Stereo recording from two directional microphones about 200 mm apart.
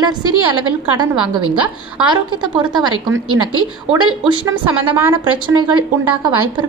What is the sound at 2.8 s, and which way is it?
A woman's voice, 90° right.